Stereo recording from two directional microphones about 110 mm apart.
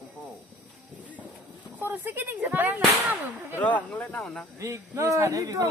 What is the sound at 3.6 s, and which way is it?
Speech, 15° left (ahead or behind).